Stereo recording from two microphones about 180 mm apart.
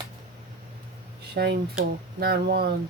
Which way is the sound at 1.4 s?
60° right (ahead or behind).